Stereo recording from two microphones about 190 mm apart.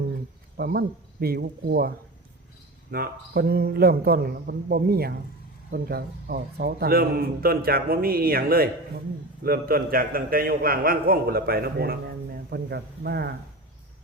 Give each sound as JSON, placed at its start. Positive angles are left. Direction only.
{"t": 0.5, "sound": "speech", "side_deg": -55}
{"t": 2.9, "sound": "a man's voice", "side_deg": -55}